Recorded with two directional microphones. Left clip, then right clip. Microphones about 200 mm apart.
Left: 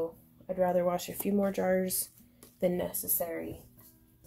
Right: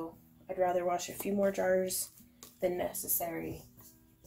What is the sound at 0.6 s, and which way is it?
Speech, 45° left (ahead or behind).